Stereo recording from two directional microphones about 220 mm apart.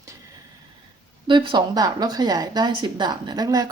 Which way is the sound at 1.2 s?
20° right (ahead or behind).